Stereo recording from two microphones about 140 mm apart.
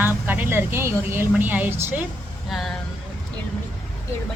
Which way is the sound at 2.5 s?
Centre (ahead or behind).